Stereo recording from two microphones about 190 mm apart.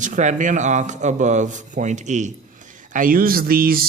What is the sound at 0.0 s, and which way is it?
A man's voice, 40° right (ahead or behind).